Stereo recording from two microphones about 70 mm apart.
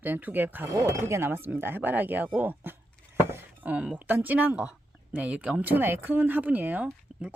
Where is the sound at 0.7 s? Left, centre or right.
Right.